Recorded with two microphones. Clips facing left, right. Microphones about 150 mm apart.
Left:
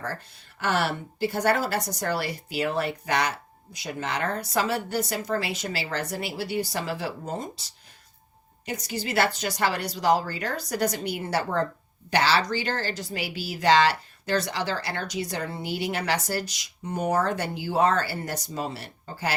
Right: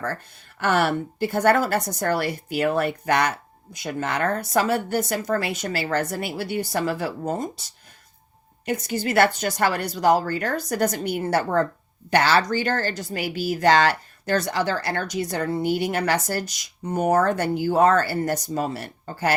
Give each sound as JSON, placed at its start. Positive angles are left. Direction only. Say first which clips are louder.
{"t": 0.6, "sound": "speech", "louder": "right 5 dB", "side_deg": -50}
{"t": 8.6, "sound": "speech", "louder": "right 6 dB", "side_deg": -55}